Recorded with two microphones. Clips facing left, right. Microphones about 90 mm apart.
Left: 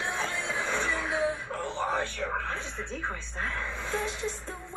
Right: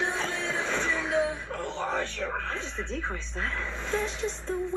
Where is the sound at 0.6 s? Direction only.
55° left (ahead or behind).